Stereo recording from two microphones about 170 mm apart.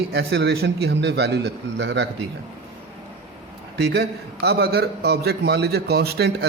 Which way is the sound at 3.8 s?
80° right.